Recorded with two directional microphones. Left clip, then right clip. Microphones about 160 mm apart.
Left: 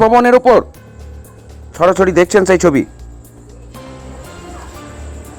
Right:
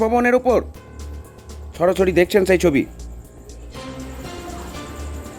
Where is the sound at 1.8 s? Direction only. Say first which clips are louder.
Left 6 dB; 15° left (ahead or behind).